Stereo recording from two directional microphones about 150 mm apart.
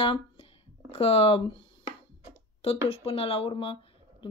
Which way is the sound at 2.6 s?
40° left (ahead or behind).